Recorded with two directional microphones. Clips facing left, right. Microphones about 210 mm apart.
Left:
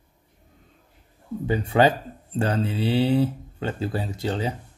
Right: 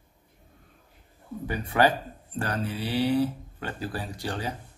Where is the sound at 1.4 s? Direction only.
25° left (ahead or behind).